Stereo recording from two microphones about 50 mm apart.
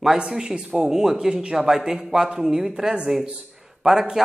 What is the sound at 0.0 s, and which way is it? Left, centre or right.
Speech, centre.